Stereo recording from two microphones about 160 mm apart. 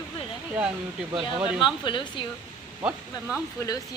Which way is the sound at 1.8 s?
30° left (ahead or behind).